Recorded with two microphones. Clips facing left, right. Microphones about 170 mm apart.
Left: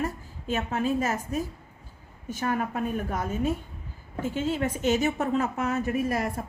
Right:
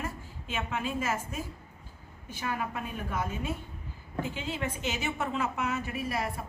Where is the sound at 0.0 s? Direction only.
40° left (ahead or behind).